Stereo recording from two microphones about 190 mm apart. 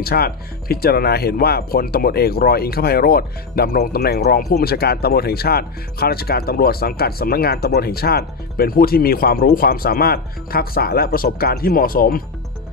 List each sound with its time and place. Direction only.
0.0 s speech: 55° left (ahead or behind)